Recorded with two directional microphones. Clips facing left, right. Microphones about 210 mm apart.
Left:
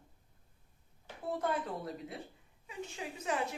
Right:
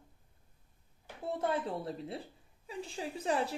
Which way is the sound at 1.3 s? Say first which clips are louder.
Right 1 dB; 25° right (ahead or behind).